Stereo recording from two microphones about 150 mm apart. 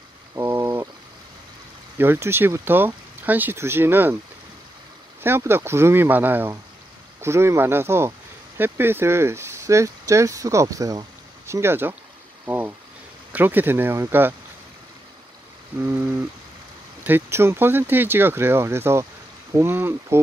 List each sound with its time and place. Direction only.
0.4 s a sound: 15° right (ahead or behind)
2.0 s speech: 15° right (ahead or behind)
5.2 s speech: 15° right (ahead or behind)
12.4 s a sound: 15° right (ahead or behind)
13.3 s speech: 10° right (ahead or behind)
15.8 s speech: 15° right (ahead or behind)